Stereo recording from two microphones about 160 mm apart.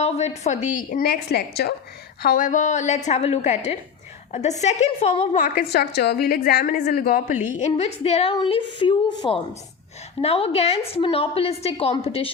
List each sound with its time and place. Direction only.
0.0 s a woman's voice: 40° left (ahead or behind); by 1.7 s 90° left
2.2 s a woman's voice: 55° left (ahead or behind); by 5.4 s 40° left (ahead or behind)
5.4 s a woman's voice: 70° left (ahead or behind); by 12.3 s 40° left (ahead or behind)